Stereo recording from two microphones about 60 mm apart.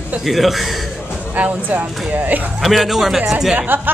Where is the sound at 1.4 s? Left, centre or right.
Right.